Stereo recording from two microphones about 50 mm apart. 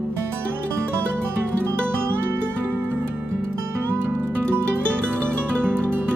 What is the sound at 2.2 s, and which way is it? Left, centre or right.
Music, right.